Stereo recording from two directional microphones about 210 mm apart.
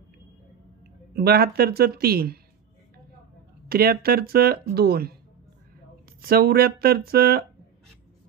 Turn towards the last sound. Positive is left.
turn(degrees=-45)  # may be behind; listen again after turning